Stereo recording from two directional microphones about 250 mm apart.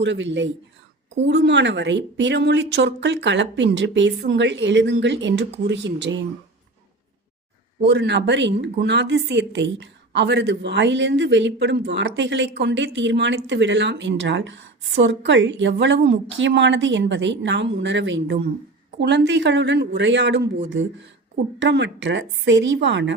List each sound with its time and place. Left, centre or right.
0.0 s a woman's voice: right
7.9 s a woman's voice: right
21.6 s a woman's voice: right